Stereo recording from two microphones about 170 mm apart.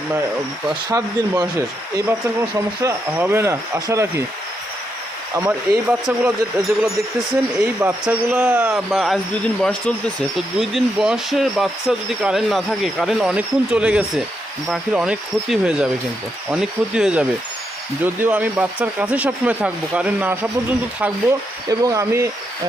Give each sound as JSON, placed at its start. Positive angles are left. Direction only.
{"t": 0.7, "sound": "speech", "side_deg": -25}
{"t": 5.4, "sound": "speech", "side_deg": -10}
{"t": 7.8, "sound": "speech", "side_deg": -10}
{"t": 21.7, "sound": "speech", "side_deg": -20}